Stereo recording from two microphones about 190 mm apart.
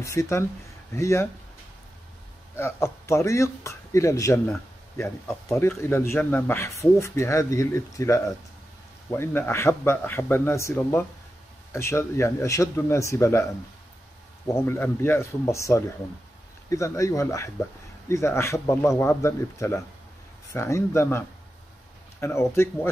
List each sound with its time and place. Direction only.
0.0 s speech: 15° left (ahead or behind)
2.5 s speech: 15° left (ahead or behind)
14.5 s speech: 15° left (ahead or behind)
22.2 s speech: 15° left (ahead or behind)